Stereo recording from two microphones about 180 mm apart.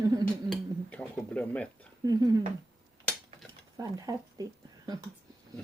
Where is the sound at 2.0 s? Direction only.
20° right (ahead or behind).